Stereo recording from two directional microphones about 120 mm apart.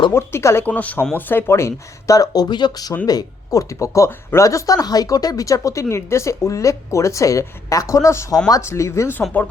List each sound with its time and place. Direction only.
0.1 s speech: 20° left (ahead or behind)